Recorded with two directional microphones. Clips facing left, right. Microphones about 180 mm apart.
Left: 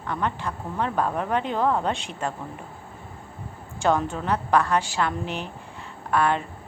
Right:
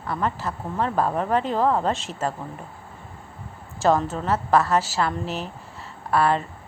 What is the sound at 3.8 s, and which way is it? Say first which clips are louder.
A woman's voice: right 2 dB; centre (ahead or behind).